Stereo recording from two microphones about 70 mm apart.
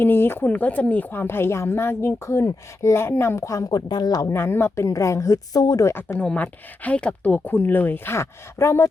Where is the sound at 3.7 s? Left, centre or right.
Left.